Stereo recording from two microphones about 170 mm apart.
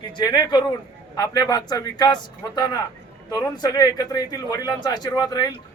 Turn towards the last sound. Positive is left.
turn(degrees=20)  # may be behind; listen again after turning